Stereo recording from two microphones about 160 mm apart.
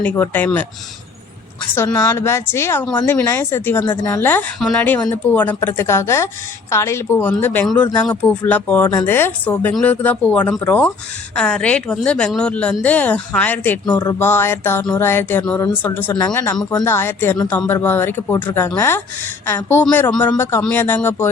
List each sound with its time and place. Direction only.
0.0 s speech: 10° left (ahead or behind)
1.7 s a woman's voice: 15° left (ahead or behind)
16.2 s speech: 20° left (ahead or behind)